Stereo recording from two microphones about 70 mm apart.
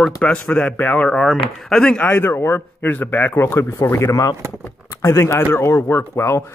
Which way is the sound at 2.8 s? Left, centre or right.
Left.